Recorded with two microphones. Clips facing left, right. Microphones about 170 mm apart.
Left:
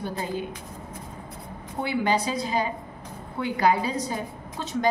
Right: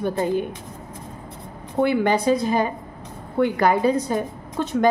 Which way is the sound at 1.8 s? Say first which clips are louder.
Right 6 dB; 55° right (ahead or behind).